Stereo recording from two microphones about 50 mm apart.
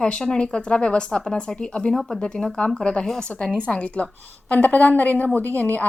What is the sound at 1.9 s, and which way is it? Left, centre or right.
A woman's voice, centre.